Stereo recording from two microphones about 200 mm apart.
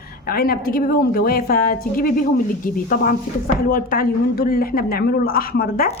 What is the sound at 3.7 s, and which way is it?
Speech, 45° left (ahead or behind).